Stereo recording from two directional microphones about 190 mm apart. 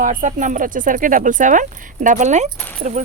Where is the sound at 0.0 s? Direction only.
40° right (ahead or behind).